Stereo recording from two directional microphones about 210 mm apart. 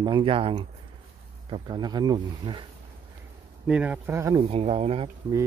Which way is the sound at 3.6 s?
5° right (ahead or behind).